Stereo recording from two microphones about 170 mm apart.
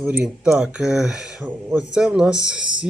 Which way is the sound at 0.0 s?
10° right (ahead or behind).